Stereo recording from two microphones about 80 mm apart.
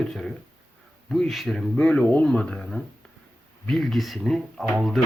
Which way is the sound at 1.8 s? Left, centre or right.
Centre.